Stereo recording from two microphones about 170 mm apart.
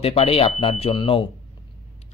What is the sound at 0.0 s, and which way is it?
Speech, 35° left (ahead or behind).